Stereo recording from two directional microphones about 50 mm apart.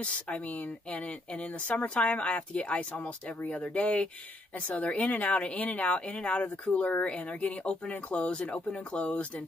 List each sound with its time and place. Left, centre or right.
0.0 s speech: left